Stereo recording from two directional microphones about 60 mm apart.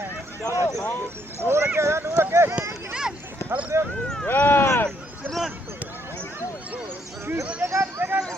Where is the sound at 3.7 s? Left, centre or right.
Right.